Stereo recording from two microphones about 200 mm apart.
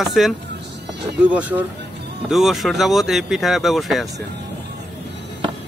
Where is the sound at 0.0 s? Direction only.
Centre (ahead or behind).